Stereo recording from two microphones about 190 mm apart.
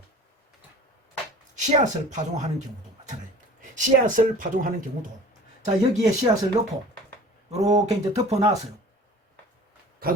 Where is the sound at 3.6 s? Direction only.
45° right (ahead or behind).